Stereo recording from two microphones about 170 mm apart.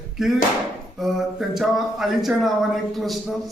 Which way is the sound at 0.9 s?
Centre (ahead or behind).